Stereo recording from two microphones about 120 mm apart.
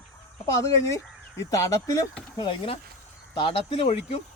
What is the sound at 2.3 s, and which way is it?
Speech, 45° left (ahead or behind).